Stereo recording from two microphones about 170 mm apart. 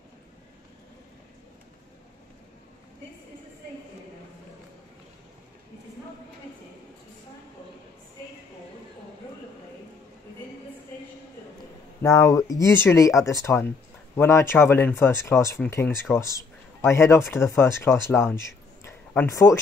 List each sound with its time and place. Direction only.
12.0 s speech: 20° left (ahead or behind)